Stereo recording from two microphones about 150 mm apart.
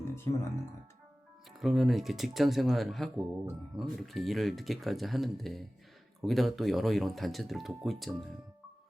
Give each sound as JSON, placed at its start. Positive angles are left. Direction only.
{"t": 0.0, "sound": "music", "side_deg": 15}
{"t": 1.5, "sound": "speech", "side_deg": 0}